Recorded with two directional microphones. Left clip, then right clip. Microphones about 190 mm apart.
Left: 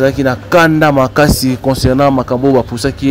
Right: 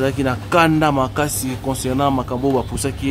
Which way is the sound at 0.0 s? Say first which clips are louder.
Left 8 dB; 15° left (ahead or behind).